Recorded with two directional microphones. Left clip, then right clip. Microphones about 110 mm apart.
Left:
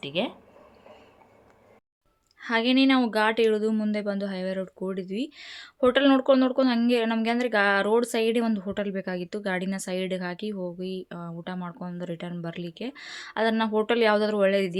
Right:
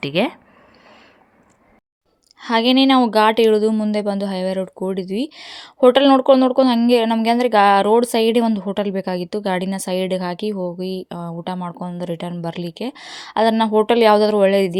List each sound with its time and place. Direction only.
0.0 s a woman's voice: 55° right (ahead or behind)
2.4 s a woman's voice: 65° right (ahead or behind)